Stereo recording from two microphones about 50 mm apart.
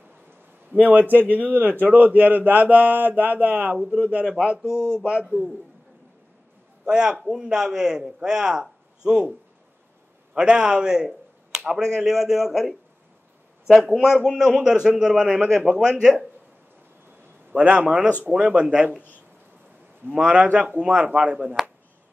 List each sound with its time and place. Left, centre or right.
0.7 s a man's voice: right; by 5.4 s centre
6.9 s speech: centre
10.3 s speech: centre
11.1 s finger snapping: centre
11.7 s speech: centre
13.7 s speech: centre
17.5 s a man's voice: right
20.5 s speech: right